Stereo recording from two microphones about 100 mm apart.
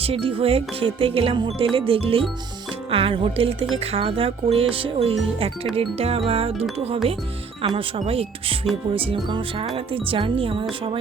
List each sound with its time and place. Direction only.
0.0 s speech: 70° right (ahead or behind)